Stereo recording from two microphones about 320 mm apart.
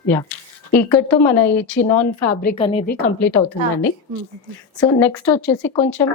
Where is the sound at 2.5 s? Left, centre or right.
Centre.